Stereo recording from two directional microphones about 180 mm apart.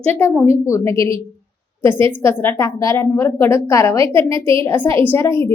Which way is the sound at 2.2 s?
15° left (ahead or behind).